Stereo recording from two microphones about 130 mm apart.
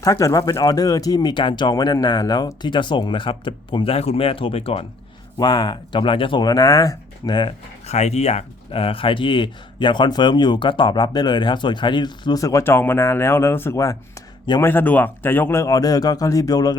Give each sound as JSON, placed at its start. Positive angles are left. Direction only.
{"t": 0.0, "sound": "speech", "side_deg": 25}
{"t": 5.4, "sound": "speech", "side_deg": 30}
{"t": 7.9, "sound": "speech", "side_deg": 55}